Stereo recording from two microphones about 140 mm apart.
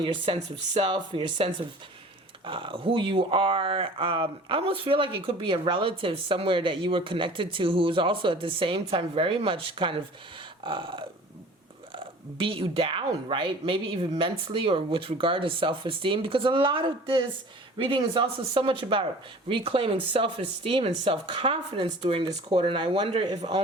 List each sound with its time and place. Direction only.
0.0 s speech: 35° right (ahead or behind)
22.4 s speech: 35° right (ahead or behind); by 23.5 s 50° right (ahead or behind)